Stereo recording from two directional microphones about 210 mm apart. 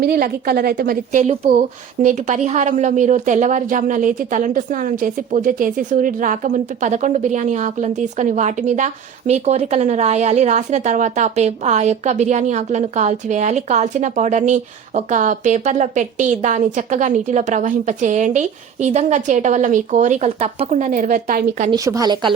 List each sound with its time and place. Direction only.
0.0 s a woman's voice: 45° right (ahead or behind)
21.7 s speech: 15° right (ahead or behind)